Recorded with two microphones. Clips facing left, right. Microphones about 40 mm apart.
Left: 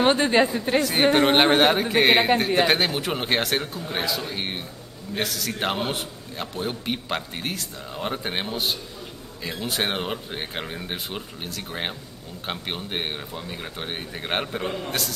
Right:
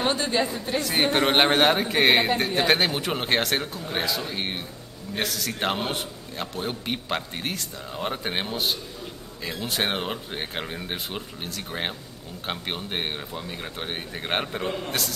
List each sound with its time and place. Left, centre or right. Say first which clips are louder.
0.0 s speech: left 5 dB; left
0.5 s speech: left 5 dB; centre
1.0 s a man's voice: left 2 dB; centre